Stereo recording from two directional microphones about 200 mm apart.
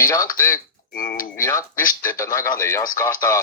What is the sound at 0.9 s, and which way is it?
Speech, 45° left (ahead or behind).